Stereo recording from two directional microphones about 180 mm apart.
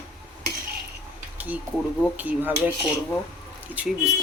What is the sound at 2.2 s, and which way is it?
Speech, 10° right (ahead or behind).